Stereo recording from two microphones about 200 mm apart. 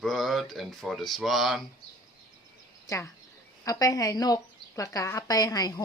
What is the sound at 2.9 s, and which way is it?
A woman's voice, 15° left (ahead or behind).